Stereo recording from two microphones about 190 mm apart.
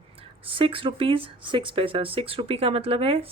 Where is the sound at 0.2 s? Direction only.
30° right (ahead or behind).